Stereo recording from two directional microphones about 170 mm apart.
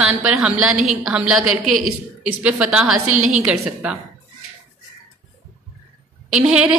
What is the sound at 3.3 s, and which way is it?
Speech, 5° right (ahead or behind).